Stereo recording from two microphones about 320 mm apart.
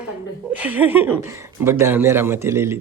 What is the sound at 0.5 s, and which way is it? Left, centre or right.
Speech, centre.